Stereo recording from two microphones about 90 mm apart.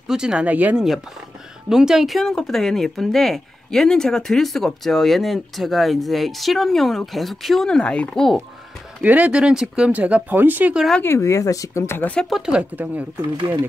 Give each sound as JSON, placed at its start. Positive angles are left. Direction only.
{"t": 0.1, "sound": "speech", "side_deg": -10}
{"t": 1.7, "sound": "speech", "side_deg": -5}
{"t": 9.0, "sound": "speech", "side_deg": -15}
{"t": 11.0, "sound": "speech", "side_deg": 30}
{"t": 12.3, "sound": "speech", "side_deg": -5}
{"t": 12.7, "sound": "speech", "side_deg": -20}